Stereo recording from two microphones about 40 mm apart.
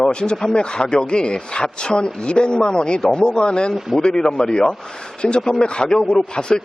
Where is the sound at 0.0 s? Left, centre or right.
Left.